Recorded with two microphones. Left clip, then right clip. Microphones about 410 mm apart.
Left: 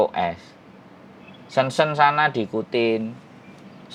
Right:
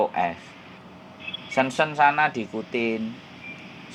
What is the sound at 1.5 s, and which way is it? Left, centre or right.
Speech, left.